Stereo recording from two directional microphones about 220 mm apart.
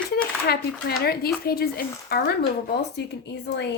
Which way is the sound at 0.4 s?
45° left (ahead or behind).